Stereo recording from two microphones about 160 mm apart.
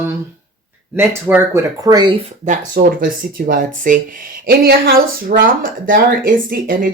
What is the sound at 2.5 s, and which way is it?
Speech, 60° right (ahead or behind).